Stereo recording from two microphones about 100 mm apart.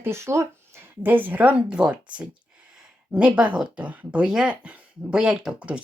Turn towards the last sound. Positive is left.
turn(degrees=-10)  # may be behind; listen again after turning